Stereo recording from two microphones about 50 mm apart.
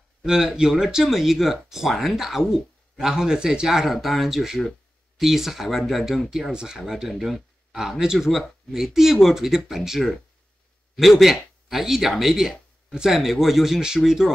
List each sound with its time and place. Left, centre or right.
0.2 s speech: centre
6.5 s speech: centre